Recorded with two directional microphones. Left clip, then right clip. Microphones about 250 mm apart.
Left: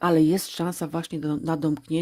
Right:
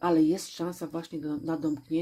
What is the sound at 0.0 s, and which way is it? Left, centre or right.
Speech, left.